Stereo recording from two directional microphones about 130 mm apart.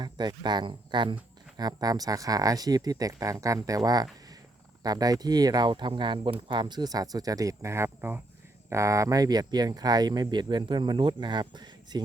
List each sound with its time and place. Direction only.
0.0 s speech: 35° right (ahead or behind)